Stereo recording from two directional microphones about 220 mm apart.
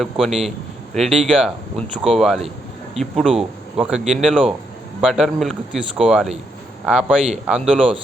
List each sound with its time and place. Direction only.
0.0 s speech: centre (ahead or behind)